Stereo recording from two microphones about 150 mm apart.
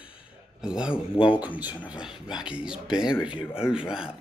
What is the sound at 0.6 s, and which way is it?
A man's voice, 5° right (ahead or behind).